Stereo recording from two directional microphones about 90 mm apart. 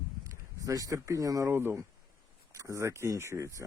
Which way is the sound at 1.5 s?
25° right (ahead or behind).